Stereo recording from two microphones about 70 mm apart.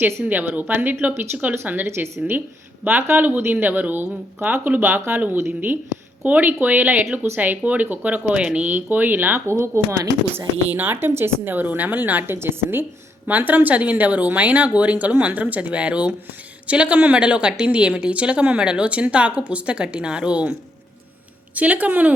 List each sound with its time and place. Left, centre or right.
0.3 s a woman's voice: right